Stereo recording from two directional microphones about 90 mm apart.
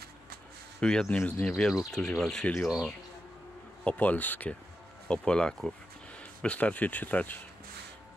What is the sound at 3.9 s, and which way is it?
Speech, 20° left (ahead or behind).